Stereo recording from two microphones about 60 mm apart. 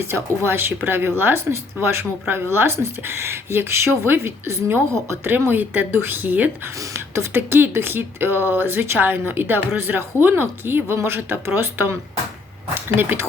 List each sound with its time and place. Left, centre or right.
0.0 s speech: right
5.5 s speech: right
6.9 s speech: right
13.0 s speech: right